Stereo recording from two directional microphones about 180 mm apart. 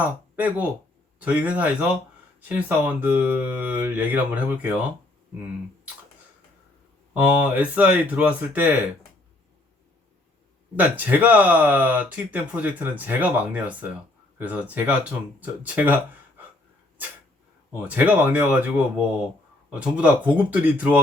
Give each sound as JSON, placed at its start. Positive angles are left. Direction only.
{"t": 0.0, "sound": "speech", "side_deg": -10}
{"t": 7.1, "sound": "speech", "side_deg": -10}
{"t": 10.8, "sound": "speech", "side_deg": -10}
{"t": 17.8, "sound": "speech", "side_deg": -10}